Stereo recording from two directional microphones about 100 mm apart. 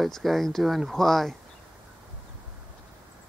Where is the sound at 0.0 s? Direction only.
Centre (ahead or behind).